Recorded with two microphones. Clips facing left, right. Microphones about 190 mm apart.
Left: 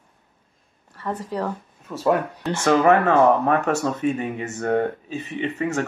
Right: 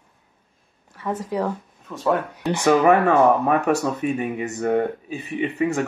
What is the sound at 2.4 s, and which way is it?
Speech, 15° right (ahead or behind).